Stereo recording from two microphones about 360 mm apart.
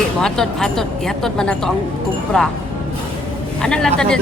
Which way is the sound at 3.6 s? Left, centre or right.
Centre.